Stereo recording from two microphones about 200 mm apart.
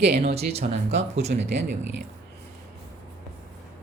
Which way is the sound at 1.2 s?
35° right (ahead or behind).